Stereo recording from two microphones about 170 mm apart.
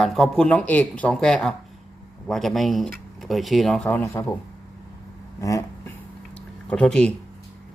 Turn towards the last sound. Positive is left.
turn(degrees=5)  # may be behind; listen again after turning